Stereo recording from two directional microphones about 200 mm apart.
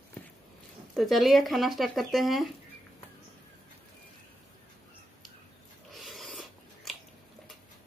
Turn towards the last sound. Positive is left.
turn(degrees=0)  # may be behind; listen again after turning